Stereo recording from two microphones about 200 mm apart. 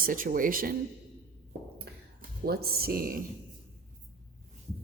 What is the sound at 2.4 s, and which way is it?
Speech, 50° right (ahead or behind).